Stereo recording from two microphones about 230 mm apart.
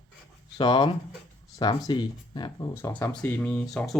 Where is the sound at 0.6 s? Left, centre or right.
Centre.